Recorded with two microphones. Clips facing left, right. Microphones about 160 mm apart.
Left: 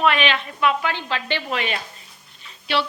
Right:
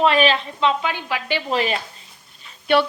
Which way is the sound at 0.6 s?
20° right (ahead or behind).